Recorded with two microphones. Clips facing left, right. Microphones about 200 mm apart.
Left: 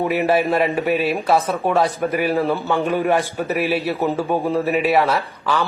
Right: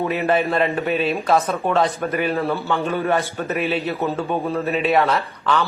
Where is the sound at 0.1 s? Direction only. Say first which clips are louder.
Left 2 dB; 10° left (ahead or behind).